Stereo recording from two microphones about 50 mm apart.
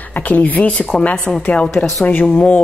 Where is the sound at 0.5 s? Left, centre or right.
Left.